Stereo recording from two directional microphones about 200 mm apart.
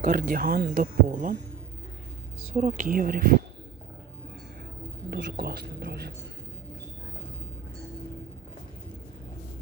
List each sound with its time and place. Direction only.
0.1 s speech: 45° right (ahead or behind)
2.6 s speech: 35° right (ahead or behind)
5.1 s speech: 50° right (ahead or behind)